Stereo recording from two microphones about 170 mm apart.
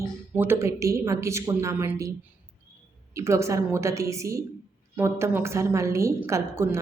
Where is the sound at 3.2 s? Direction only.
15° right (ahead or behind).